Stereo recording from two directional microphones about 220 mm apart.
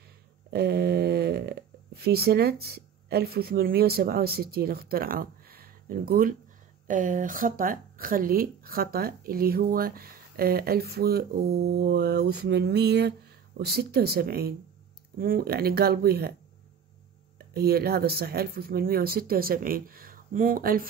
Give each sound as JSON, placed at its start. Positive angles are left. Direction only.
{"t": 0.5, "sound": "speech", "side_deg": -45}
{"t": 17.6, "sound": "speech", "side_deg": -45}